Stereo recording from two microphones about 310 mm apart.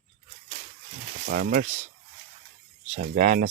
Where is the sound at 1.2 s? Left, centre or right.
Right.